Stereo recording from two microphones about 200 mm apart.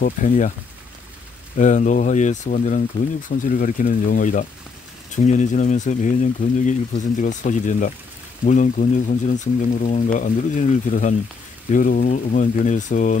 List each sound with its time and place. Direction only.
0.0 s speech: 40° left (ahead or behind)
1.6 s speech: 40° left (ahead or behind)